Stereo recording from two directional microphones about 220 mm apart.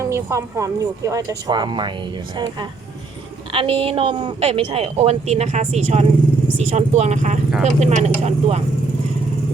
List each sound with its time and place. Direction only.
0.0 s a woman's voice: 15° right (ahead or behind); by 8.6 s 30° right (ahead or behind)